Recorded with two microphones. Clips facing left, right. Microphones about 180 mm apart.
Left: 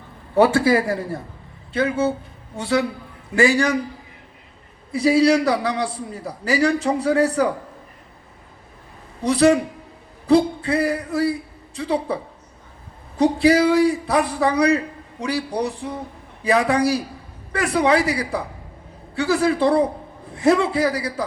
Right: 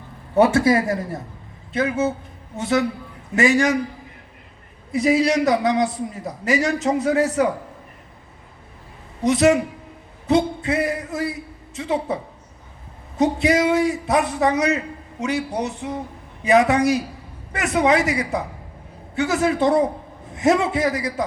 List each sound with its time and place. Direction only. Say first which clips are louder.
0.3 s a man's voice: even; 30° left (ahead or behind)
4.9 s a man's voice: left 2 dB; 30° left (ahead or behind)
9.2 s a man's voice: even; 35° left (ahead or behind)
13.1 s a man's voice: left 2 dB; 35° left (ahead or behind)